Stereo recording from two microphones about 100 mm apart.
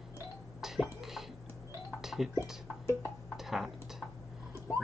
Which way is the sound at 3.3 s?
5° right (ahead or behind).